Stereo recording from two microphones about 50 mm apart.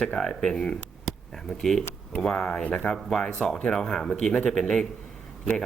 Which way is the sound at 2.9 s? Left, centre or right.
Centre.